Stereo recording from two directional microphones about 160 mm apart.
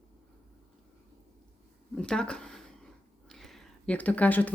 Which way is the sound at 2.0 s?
5° left (ahead or behind).